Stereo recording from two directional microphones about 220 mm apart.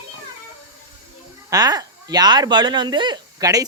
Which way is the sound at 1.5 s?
15° right (ahead or behind).